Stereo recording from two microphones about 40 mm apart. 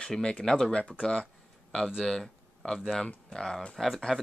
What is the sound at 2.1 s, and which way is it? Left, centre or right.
Speech, centre.